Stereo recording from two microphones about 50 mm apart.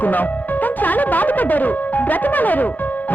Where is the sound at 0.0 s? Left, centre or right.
Left.